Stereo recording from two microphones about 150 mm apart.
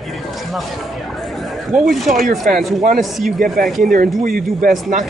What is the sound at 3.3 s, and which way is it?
Speech, 70° right (ahead or behind).